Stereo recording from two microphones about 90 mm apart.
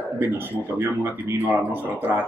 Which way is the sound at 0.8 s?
20° right (ahead or behind).